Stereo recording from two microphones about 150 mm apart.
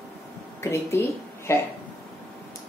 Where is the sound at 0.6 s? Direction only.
15° left (ahead or behind).